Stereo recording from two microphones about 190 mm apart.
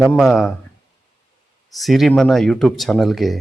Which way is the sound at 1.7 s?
Centre (ahead or behind).